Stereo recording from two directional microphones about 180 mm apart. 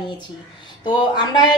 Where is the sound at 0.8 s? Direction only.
25° left (ahead or behind).